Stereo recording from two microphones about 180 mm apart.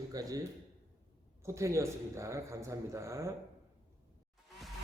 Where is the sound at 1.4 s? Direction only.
15° right (ahead or behind).